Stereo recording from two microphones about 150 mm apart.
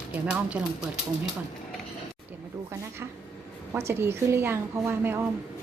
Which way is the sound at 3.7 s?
15° right (ahead or behind).